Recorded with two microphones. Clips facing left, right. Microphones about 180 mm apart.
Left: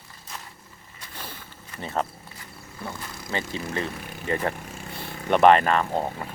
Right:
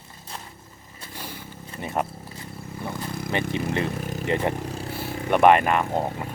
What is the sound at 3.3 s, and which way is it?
Speech, 20° right (ahead or behind).